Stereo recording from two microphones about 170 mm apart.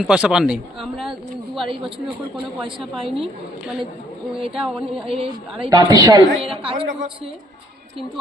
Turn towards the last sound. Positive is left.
turn(degrees=-35)  # may be behind; listen again after turning